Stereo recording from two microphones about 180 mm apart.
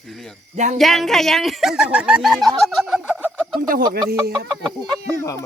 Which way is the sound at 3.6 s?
55° right (ahead or behind).